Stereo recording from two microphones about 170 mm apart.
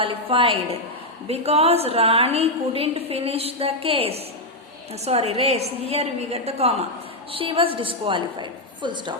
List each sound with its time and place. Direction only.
0.0 s a woman's voice: 30° right (ahead or behind)